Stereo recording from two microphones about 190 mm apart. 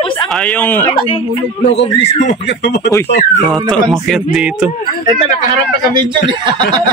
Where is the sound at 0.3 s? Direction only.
5° left (ahead or behind).